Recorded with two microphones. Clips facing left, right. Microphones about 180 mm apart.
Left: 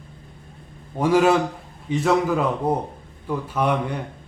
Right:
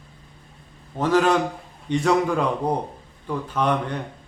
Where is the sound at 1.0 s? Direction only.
10° left (ahead or behind).